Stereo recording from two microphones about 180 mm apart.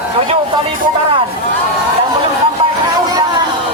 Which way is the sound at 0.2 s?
30° right (ahead or behind).